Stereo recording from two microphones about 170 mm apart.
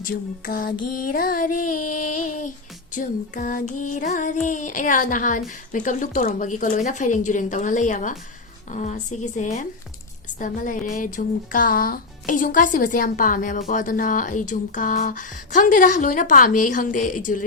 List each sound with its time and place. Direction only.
0.0 s female singing: 55° left (ahead or behind)
2.9 s a woman's voice: 50° left (ahead or behind)